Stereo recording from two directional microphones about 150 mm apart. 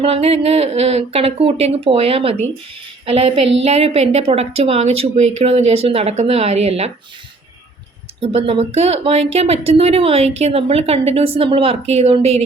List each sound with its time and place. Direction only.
0.0 s a woman's voice: 40° right (ahead or behind)
8.2 s speech: 40° right (ahead or behind)